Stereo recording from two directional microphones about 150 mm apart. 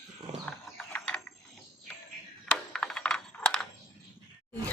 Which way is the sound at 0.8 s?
10° left (ahead or behind).